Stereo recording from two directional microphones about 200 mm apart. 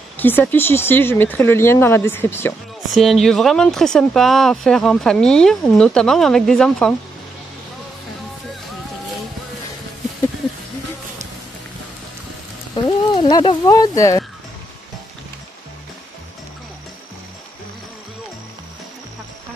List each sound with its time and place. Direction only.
0.2 s speech: 10° left (ahead or behind)
2.9 s speech: centre (ahead or behind)
12.7 s speech: 25° left (ahead or behind)